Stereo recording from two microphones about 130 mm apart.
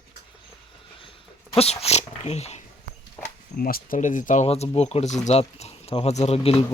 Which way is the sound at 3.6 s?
85° left.